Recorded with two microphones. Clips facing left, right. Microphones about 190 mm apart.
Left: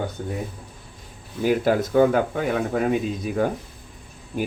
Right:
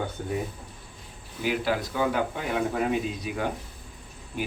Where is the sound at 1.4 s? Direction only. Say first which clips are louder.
Left 7 dB; 45° left (ahead or behind).